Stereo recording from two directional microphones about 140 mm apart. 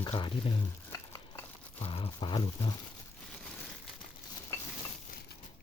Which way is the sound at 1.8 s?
40° left (ahead or behind).